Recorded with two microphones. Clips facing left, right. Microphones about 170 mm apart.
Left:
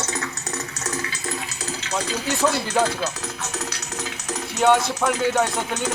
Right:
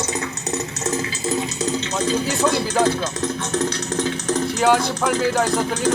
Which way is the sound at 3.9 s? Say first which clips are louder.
Right 8 dB; 30° right (ahead or behind).